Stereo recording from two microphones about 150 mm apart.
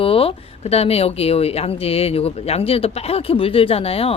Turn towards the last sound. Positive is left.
turn(degrees=40)  # may be behind; listen again after turning